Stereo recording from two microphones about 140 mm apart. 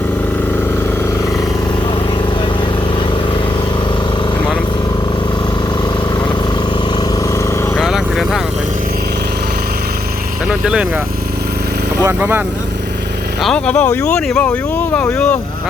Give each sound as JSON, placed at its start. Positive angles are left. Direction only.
{"t": 7.8, "sound": "vehicle", "side_deg": 0}
{"t": 10.5, "sound": "vehicle", "side_deg": -5}
{"t": 12.0, "sound": "speech", "side_deg": -15}
{"t": 13.4, "sound": "speech", "side_deg": 5}